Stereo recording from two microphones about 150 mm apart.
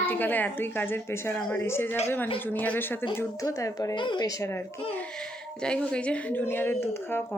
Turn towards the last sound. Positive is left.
turn(degrees=15)  # may be behind; listen again after turning